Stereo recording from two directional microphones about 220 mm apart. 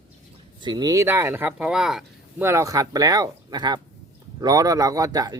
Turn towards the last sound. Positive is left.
turn(degrees=-15)  # may be behind; listen again after turning